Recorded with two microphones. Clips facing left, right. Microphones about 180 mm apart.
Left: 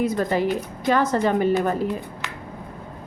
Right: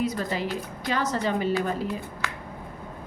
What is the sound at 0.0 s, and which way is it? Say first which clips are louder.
A woman's voice: left 6 dB; 55° left (ahead or behind).